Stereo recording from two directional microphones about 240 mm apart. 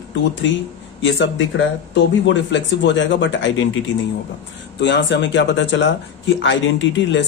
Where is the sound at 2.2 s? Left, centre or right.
Left.